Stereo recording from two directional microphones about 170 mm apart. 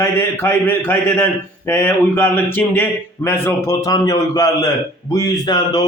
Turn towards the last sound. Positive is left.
turn(degrees=25)  # may be behind; listen again after turning